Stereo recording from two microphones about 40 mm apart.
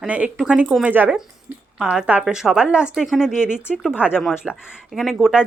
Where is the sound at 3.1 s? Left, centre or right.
Centre.